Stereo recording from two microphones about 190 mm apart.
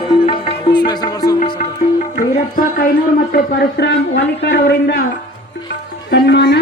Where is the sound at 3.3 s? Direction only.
55° left (ahead or behind).